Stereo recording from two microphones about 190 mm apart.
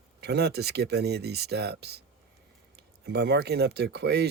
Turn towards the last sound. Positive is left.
turn(degrees=-60)  # may be behind; listen again after turning